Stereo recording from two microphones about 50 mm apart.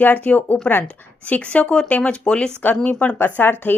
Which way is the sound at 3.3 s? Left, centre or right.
Left.